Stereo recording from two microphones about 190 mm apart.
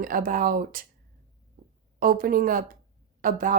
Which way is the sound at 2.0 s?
50° right (ahead or behind).